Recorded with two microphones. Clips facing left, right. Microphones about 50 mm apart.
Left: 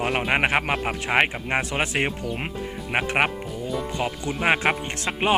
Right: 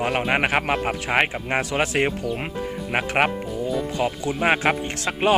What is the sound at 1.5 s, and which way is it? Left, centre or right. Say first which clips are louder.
Music: right 2 dB; left.